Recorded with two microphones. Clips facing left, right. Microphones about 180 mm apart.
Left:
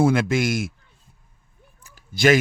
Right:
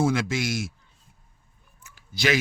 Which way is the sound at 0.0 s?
55° left (ahead or behind).